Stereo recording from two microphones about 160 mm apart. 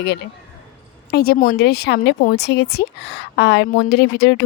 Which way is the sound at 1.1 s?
75° left (ahead or behind).